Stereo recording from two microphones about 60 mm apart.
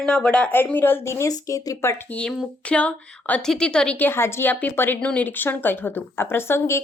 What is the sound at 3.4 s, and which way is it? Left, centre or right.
Speech, centre.